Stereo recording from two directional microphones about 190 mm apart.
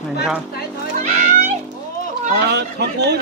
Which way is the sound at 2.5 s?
60° right (ahead or behind).